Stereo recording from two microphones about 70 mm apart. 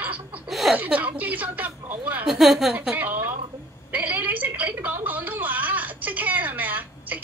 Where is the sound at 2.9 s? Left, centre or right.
Right.